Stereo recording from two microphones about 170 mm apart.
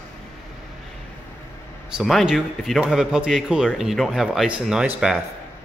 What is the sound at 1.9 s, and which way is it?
Speech, centre (ahead or behind).